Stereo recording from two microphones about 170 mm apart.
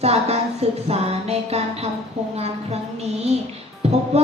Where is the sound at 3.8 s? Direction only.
35° right (ahead or behind).